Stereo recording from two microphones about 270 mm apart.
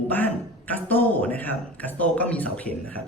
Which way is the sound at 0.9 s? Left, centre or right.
Centre.